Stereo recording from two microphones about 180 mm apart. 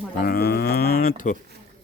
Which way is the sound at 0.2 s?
60° left (ahead or behind).